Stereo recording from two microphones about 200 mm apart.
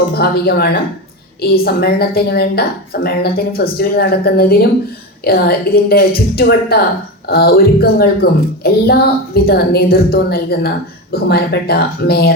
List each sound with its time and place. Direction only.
0.1 s speech: 50° left (ahead or behind)